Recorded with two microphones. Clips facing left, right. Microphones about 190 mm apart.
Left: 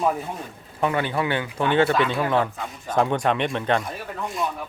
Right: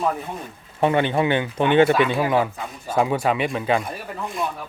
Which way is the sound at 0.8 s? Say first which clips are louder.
Right 4 dB; 25° right (ahead or behind).